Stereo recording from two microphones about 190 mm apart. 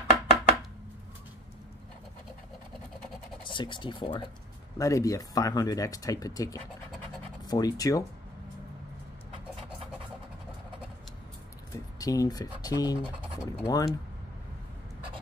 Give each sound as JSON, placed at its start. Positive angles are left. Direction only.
{"t": 3.4, "sound": "speech", "side_deg": 25}
{"t": 11.7, "sound": "speech", "side_deg": 20}